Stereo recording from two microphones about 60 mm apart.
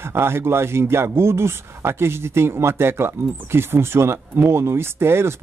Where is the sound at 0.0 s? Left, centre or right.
Right.